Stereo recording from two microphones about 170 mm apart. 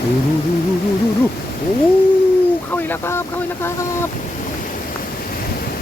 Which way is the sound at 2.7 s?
10° left (ahead or behind).